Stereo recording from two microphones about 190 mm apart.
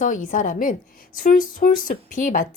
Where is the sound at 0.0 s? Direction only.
45° left (ahead or behind).